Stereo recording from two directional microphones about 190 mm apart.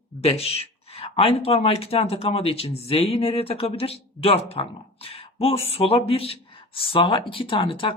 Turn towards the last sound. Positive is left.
turn(degrees=30)  # may be behind; listen again after turning